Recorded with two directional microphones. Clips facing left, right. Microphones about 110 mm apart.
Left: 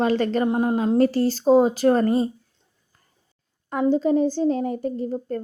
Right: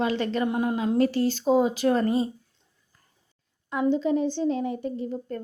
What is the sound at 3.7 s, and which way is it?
A woman's voice, 40° left (ahead or behind).